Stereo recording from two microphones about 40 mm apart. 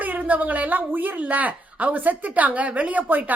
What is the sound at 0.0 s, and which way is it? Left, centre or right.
A woman's voice, right.